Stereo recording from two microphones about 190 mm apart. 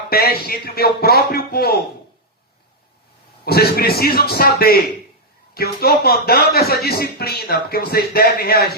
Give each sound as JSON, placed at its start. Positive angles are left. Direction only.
{"t": 0.1, "sound": "a man's voice", "side_deg": 55}
{"t": 3.4, "sound": "a man's voice", "side_deg": 55}